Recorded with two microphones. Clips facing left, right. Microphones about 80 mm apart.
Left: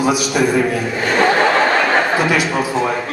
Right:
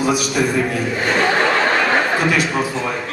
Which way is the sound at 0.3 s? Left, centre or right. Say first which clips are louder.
Left 3 dB; centre.